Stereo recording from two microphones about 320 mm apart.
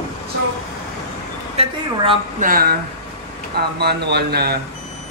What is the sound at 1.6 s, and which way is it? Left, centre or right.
A woman's voice, right.